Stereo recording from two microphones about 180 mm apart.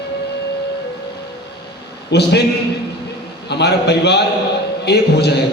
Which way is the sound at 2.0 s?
65° left (ahead or behind).